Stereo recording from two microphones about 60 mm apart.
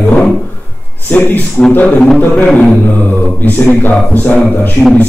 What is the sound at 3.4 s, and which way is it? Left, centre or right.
A man's voice, left.